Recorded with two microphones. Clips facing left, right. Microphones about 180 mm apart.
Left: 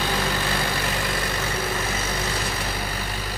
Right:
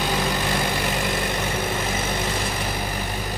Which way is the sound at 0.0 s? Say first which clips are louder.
Right 2 dB; 15° right (ahead or behind).